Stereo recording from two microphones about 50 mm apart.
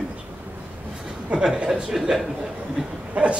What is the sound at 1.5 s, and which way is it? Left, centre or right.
Speech, centre.